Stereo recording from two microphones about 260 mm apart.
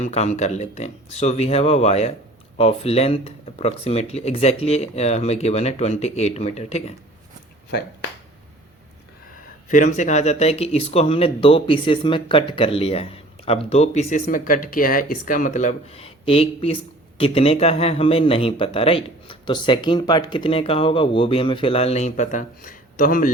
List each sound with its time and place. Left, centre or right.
0.0 s speech: left
9.6 s speech: left